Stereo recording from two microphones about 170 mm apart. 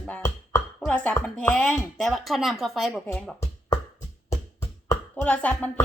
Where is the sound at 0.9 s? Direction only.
5° left (ahead or behind).